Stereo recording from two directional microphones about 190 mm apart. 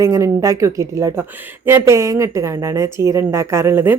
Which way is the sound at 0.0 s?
15° right (ahead or behind).